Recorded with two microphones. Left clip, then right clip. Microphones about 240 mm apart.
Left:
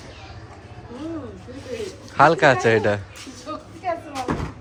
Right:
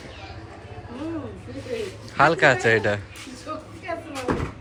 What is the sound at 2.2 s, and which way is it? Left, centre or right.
Speech, centre.